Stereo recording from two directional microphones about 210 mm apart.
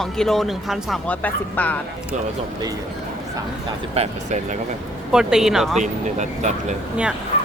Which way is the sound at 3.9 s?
30° right (ahead or behind).